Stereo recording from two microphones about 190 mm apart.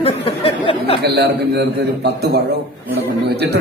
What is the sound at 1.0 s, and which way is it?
A man's voice, 60° right (ahead or behind).